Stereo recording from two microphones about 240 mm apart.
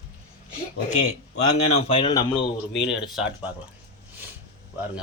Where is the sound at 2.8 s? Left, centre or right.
Centre.